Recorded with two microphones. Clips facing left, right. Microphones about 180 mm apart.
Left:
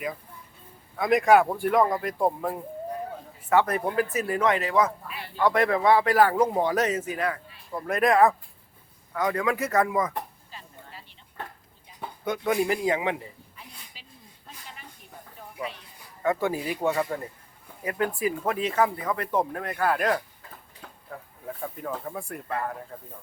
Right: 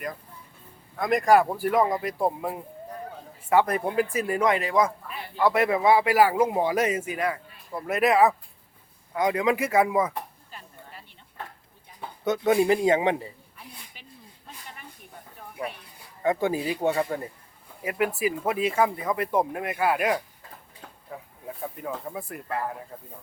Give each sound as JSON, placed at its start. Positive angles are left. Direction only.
{"t": 0.9, "sound": "a man's voice", "side_deg": 0}
{"t": 3.8, "sound": "speech", "side_deg": -25}
{"t": 4.3, "sound": "a man's voice", "side_deg": -15}
{"t": 12.2, "sound": "speech", "side_deg": -25}
{"t": 16.2, "sound": "speech", "side_deg": -20}
{"t": 16.8, "sound": "speech", "side_deg": -30}
{"t": 17.8, "sound": "a man's voice", "side_deg": -15}